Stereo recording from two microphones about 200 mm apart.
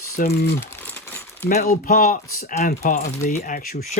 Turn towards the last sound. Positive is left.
turn(degrees=40)  # may be behind; listen again after turning